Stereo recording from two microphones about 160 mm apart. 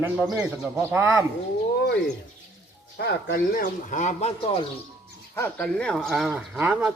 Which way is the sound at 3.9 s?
50° left (ahead or behind).